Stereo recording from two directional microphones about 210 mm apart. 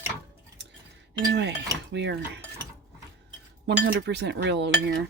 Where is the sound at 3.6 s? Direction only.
55° right (ahead or behind).